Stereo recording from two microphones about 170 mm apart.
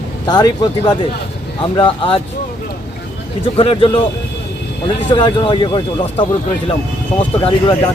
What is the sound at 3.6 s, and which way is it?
Speech, 30° left (ahead or behind).